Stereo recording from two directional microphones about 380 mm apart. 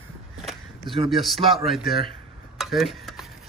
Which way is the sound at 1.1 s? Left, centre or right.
Centre.